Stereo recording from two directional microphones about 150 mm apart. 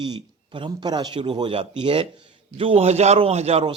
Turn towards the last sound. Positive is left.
turn(degrees=-45)  # may be behind; listen again after turning